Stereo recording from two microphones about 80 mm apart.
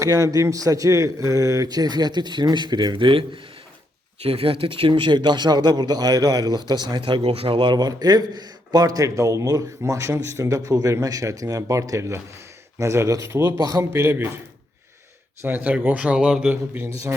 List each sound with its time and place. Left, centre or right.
0.0 s a man's voice: right
4.6 s a man's voice: right
13.6 s a man's voice: right
13.9 s a man's voice: right
15.4 s speech: right; by 16.5 s centre
16.5 s a man's voice: right